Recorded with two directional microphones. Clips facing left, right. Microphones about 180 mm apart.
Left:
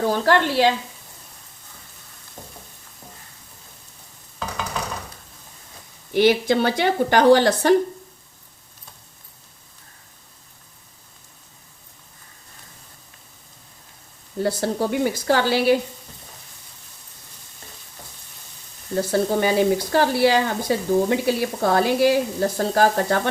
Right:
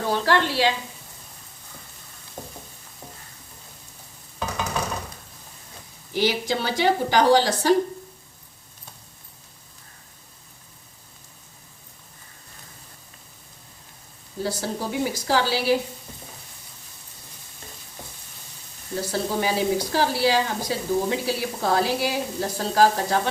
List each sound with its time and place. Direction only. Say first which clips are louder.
0.1 s sizzle: right 1 dB; 50° left (ahead or behind)
6.1 s speech: left 7 dB; 60° left (ahead or behind)
14.3 s speech: left 5 dB; 60° left (ahead or behind)
18.9 s speech: left 5 dB; 55° left (ahead or behind)